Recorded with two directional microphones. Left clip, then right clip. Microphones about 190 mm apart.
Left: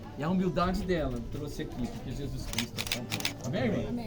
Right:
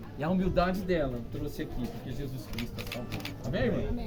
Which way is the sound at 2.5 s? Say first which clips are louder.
Left 6 dB; 65° left (ahead or behind).